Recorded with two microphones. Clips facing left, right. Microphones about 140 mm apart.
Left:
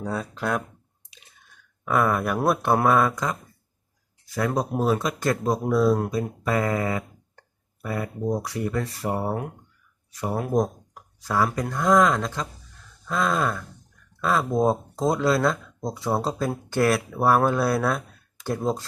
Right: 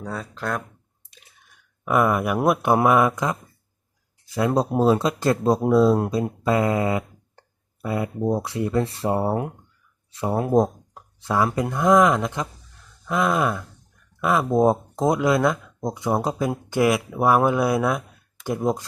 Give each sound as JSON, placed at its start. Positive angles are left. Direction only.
{"t": 0.0, "sound": "speech", "side_deg": 5}
{"t": 1.8, "sound": "speech", "side_deg": -15}
{"t": 4.4, "sound": "speech", "side_deg": -25}